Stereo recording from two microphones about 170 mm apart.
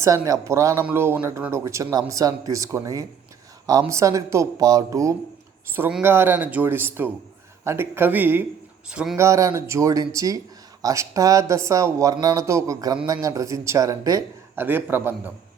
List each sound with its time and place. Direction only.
0.0 s speech: 20° right (ahead or behind)
9.2 s speech: 15° right (ahead or behind)